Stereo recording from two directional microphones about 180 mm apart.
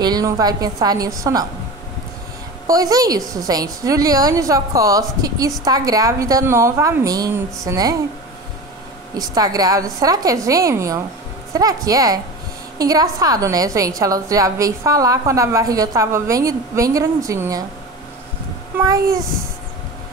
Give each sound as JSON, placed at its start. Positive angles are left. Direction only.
{"t": 0.0, "sound": "a woman's voice", "side_deg": -20}
{"t": 2.6, "sound": "a woman's voice", "side_deg": -20}
{"t": 9.1, "sound": "a woman's voice", "side_deg": -20}
{"t": 18.7, "sound": "a child's voice", "side_deg": -10}